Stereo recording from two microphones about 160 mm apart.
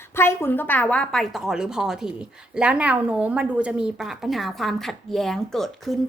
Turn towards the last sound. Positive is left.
turn(degrees=0)  # may be behind; listen again after turning